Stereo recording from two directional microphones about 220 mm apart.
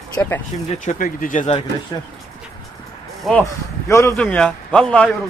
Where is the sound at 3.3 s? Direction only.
10° left (ahead or behind).